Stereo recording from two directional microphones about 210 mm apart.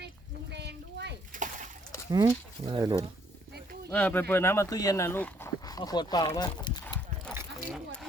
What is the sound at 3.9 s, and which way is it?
Speech, 10° left (ahead or behind).